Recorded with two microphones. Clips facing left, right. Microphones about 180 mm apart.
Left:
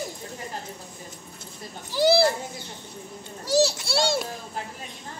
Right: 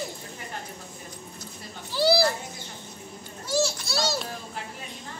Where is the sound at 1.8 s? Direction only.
20° left (ahead or behind).